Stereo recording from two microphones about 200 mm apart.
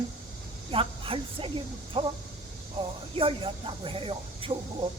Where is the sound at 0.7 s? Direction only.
25° right (ahead or behind).